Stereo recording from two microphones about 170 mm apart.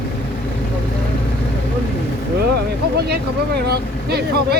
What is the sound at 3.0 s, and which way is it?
Speech, 70° right (ahead or behind).